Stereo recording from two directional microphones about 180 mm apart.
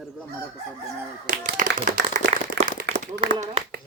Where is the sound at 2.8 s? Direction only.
70° right (ahead or behind).